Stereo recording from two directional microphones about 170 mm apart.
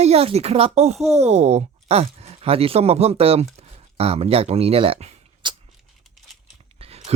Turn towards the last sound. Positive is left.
turn(degrees=-35)  # may be behind; listen again after turning